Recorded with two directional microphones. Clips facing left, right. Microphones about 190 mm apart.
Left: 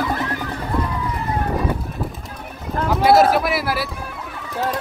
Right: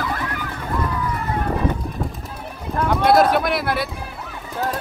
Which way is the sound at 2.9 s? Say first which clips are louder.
Left 2 dB; 5° left (ahead or behind).